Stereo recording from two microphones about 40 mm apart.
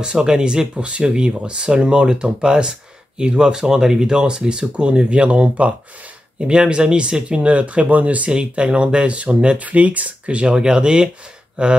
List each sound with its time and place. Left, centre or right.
0.0 s speech: centre; by 8.3 s right
8.3 s speech: right